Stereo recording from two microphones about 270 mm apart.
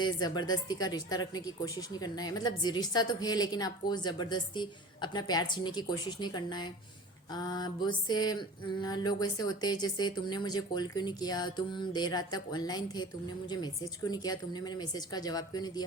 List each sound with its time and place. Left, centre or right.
0.0 s speech: centre
14.1 s speech: centre